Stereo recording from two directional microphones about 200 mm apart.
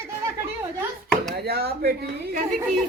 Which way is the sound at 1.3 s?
50° right (ahead or behind).